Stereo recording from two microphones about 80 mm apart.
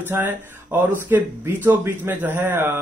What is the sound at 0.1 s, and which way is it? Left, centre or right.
Speech, right.